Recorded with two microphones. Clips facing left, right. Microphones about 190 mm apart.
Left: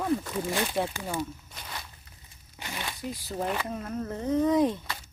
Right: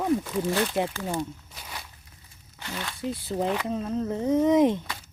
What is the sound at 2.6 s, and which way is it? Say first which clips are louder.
Speech: right 2 dB; 15° left (ahead or behind).